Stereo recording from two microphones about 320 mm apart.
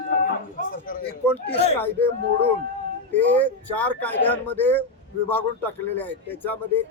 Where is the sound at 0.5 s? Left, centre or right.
Left.